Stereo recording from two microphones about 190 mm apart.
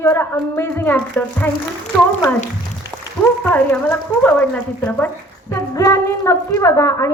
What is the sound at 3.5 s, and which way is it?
A woman's voice, 10° left (ahead or behind).